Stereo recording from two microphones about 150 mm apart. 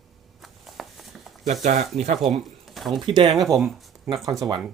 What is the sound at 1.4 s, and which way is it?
Speech, 55° right (ahead or behind).